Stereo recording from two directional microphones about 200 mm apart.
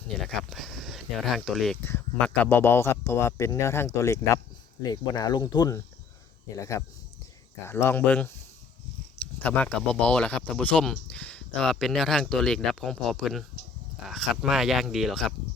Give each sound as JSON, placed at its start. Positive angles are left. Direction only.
{"t": 0.1, "sound": "speech", "side_deg": 5}